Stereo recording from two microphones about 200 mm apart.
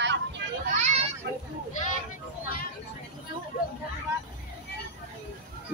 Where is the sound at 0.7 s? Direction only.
35° right (ahead or behind).